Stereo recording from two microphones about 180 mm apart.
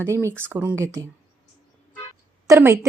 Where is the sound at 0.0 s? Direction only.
15° right (ahead or behind).